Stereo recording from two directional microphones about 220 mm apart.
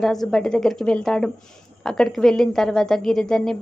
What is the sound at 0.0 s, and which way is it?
A woman's voice, centre (ahead or behind).